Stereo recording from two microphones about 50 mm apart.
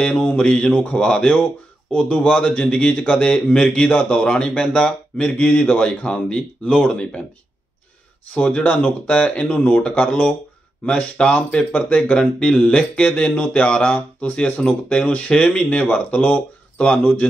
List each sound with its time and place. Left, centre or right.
0.0 s mantra: centre
0.4 s speech: centre
5.4 s speech: left
8.4 s speech: left
16.2 s speech: left